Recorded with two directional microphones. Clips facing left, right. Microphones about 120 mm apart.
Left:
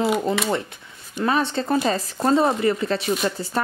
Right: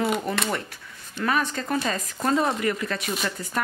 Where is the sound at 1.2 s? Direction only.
30° left (ahead or behind).